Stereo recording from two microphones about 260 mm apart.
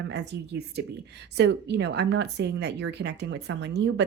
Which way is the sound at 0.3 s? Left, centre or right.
Right.